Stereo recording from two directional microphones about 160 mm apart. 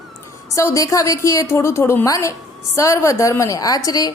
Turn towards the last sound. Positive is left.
turn(degrees=20)  # may be behind; listen again after turning